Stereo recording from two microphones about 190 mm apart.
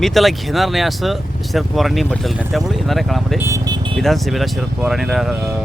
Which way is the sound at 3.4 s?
15° right (ahead or behind).